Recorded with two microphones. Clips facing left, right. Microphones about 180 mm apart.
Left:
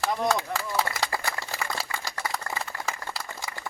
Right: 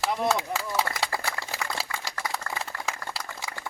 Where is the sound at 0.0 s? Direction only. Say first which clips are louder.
Even; 5° right (ahead or behind).